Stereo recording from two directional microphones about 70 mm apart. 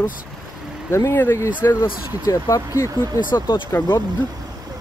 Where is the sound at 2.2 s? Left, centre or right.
Left.